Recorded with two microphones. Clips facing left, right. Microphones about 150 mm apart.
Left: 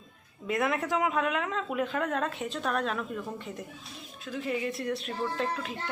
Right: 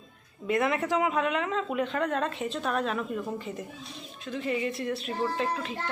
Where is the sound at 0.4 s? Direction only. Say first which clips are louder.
Right 2 dB; centre (ahead or behind).